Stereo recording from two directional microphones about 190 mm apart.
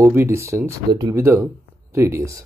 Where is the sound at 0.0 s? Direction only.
15° right (ahead or behind).